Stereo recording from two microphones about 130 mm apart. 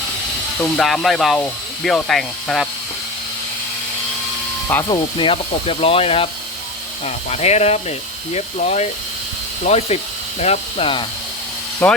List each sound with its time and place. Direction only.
0.6 s speech: 5° left (ahead or behind)
4.9 s speech: 40° left (ahead or behind)
11.8 s speech: 15° left (ahead or behind)